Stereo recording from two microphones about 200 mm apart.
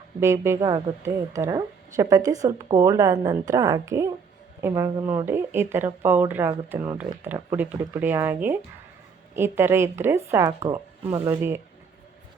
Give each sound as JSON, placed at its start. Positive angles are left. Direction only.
{"t": 0.2, "sound": "a woman's voice", "side_deg": -15}